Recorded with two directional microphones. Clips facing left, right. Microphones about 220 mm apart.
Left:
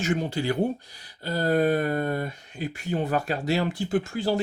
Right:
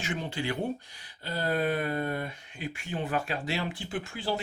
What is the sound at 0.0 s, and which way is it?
Speech, 40° left (ahead or behind).